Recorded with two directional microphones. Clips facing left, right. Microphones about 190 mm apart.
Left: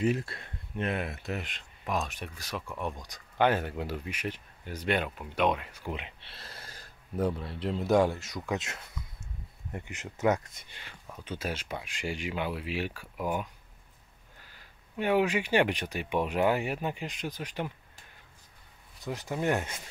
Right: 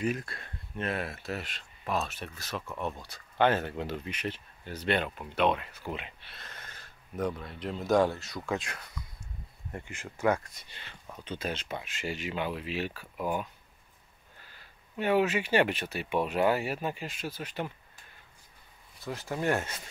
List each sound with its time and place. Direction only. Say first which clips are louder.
0.0 s speech: left 3 dB; 25° left (ahead or behind)
6.2 s speech: left 1 dB; 30° left (ahead or behind)
7.9 s speech: even; 15° left (ahead or behind)
15.0 s speech: even; 15° left (ahead or behind)
19.0 s speech: even; 15° left (ahead or behind)